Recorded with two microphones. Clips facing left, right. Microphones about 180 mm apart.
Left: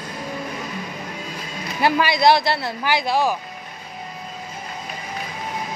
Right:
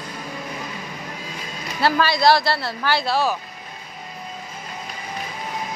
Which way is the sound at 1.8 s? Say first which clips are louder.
Left 1 dB; 15° left (ahead or behind).